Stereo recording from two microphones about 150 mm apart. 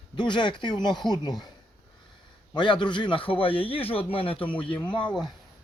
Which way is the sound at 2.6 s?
30° left (ahead or behind).